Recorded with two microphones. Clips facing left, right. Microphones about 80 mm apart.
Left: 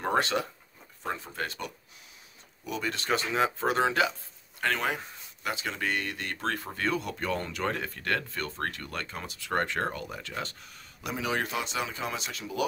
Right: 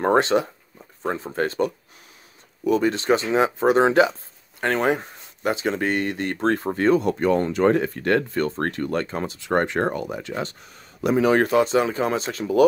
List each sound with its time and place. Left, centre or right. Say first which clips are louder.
0.2 s speech: right 9 dB; right
1.0 s speech: right 9 dB; right
2.8 s speech: right 10 dB; right